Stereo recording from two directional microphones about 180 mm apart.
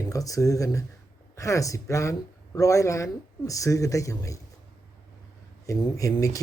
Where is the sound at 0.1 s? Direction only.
20° left (ahead or behind).